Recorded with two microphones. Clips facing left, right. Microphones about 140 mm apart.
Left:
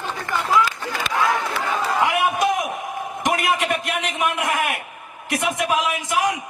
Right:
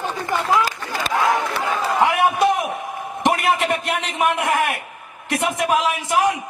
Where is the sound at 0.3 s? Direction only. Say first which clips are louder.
Even; 25° right (ahead or behind).